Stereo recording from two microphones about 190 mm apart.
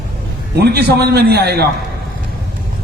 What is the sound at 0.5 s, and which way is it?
A man's voice, 60° right (ahead or behind).